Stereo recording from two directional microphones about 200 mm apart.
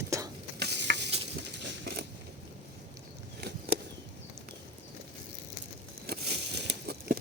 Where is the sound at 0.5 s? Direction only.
55° right (ahead or behind).